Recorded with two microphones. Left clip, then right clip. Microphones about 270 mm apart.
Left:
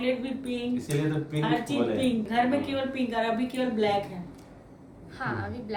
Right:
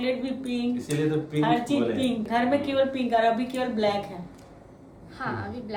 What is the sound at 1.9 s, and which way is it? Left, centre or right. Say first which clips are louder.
A woman's voice: even; centre.